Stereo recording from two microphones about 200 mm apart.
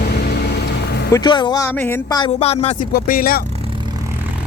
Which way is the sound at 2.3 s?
30° left (ahead or behind).